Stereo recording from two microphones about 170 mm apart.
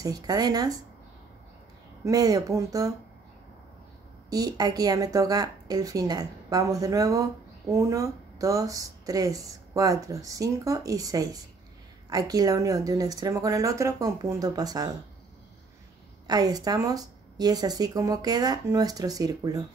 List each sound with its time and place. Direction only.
0.0 s speech: 20° right (ahead or behind)
2.0 s speech: 20° right (ahead or behind)
4.3 s speech: 20° right (ahead or behind)
16.3 s speech: 20° right (ahead or behind)